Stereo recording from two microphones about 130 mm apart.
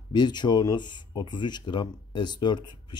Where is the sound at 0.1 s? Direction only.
35° left (ahead or behind).